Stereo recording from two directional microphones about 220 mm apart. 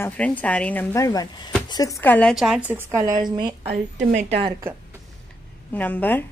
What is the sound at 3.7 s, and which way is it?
Speech, 35° right (ahead or behind).